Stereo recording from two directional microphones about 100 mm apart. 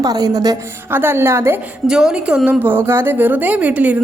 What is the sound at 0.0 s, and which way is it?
Speech, 40° right (ahead or behind).